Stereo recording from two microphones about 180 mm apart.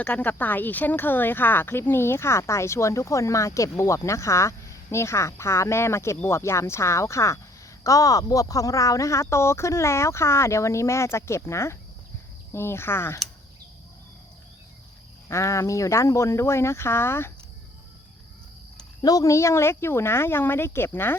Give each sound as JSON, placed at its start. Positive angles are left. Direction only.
{"t": 0.0, "sound": "speech", "side_deg": 10}
{"t": 15.3, "sound": "speech", "side_deg": 15}
{"t": 18.8, "sound": "speech", "side_deg": 20}